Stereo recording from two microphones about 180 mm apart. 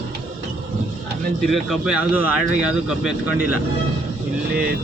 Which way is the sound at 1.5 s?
Centre (ahead or behind).